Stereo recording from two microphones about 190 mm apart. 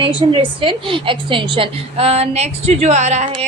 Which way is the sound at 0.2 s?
25° right (ahead or behind).